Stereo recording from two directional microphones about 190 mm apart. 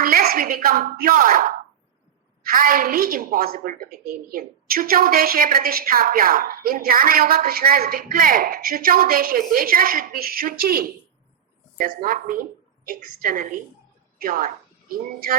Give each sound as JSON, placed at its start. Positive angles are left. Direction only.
{"t": 0.0, "sound": "a woman's voice", "side_deg": -50}